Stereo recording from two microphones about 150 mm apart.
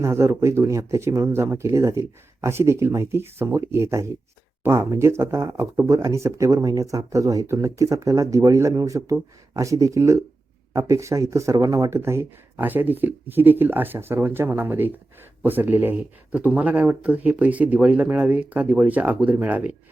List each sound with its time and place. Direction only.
0.0 s speech: 20° right (ahead or behind)